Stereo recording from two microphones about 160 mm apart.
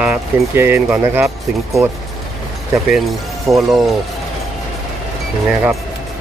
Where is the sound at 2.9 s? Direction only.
Centre (ahead or behind).